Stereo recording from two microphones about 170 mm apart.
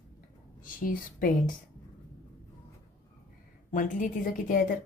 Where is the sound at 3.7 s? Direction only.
55° left (ahead or behind).